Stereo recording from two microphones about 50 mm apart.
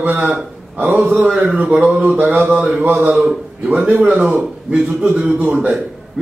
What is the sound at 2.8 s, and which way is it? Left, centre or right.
A man's voice, right.